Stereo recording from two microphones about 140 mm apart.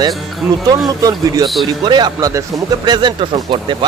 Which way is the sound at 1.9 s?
30° right (ahead or behind).